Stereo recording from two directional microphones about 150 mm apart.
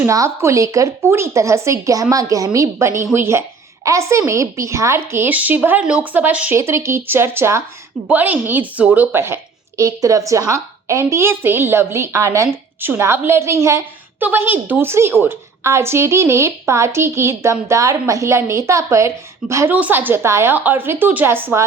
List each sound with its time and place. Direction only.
0.0 s a woman's voice: 20° right (ahead or behind)